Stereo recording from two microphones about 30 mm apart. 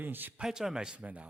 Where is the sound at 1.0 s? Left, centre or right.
Right.